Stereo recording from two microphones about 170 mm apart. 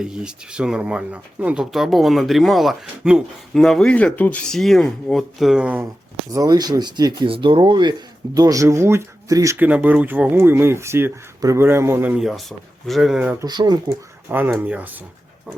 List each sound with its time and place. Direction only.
0.0 s speech: 5° right (ahead or behind)
6.3 s speech: 20° right (ahead or behind); by 13.3 s 5° right (ahead or behind)
13.4 s speech: 25° right (ahead or behind)
14.3 s speech: 10° right (ahead or behind)